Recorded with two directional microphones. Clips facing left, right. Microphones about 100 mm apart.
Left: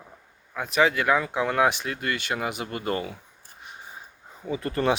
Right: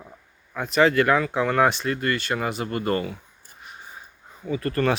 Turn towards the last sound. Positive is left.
turn(degrees=15)  # may be behind; listen again after turning